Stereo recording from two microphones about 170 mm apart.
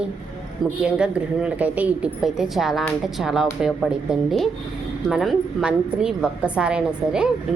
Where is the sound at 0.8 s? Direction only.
5° right (ahead or behind).